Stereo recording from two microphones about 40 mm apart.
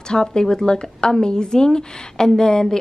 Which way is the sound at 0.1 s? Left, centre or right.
Centre.